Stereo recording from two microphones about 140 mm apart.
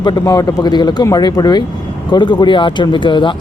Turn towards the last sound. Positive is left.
turn(degrees=35)  # may be behind; listen again after turning